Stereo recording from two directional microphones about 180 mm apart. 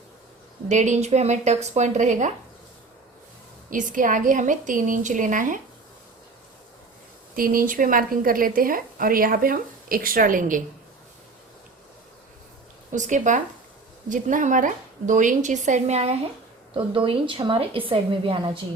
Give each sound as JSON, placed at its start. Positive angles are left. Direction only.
{"t": 0.7, "sound": "a woman's voice", "side_deg": -40}
{"t": 3.7, "sound": "a woman's voice", "side_deg": -45}
{"t": 7.3, "sound": "a woman's voice", "side_deg": -50}
{"t": 12.9, "sound": "a woman's voice", "side_deg": -45}